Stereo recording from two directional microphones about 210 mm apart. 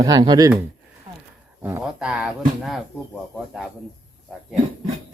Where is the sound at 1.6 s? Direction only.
10° right (ahead or behind).